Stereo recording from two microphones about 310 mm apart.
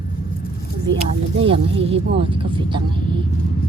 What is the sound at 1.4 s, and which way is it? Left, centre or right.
Speech, centre.